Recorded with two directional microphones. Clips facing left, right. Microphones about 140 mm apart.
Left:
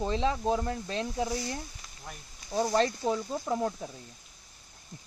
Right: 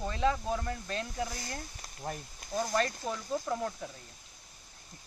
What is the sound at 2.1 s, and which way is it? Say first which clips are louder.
Speech: right 8 dB; 50° right (ahead or behind).